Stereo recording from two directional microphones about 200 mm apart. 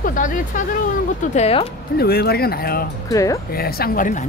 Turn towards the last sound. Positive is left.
turn(degrees=40)  # may be behind; listen again after turning